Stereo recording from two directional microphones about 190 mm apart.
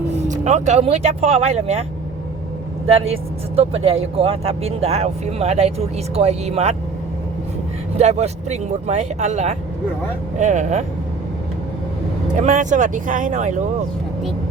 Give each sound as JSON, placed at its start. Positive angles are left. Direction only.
{"t": 0.3, "sound": "speech", "side_deg": -40}
{"t": 3.1, "sound": "speech", "side_deg": -30}
{"t": 7.9, "sound": "speech", "side_deg": -35}
{"t": 12.4, "sound": "speech", "side_deg": -40}